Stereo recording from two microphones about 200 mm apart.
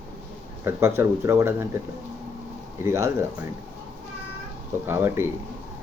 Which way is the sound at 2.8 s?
15° right (ahead or behind).